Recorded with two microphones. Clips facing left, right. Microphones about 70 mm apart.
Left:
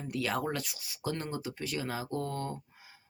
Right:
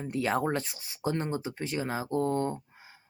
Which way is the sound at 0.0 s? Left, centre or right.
Right.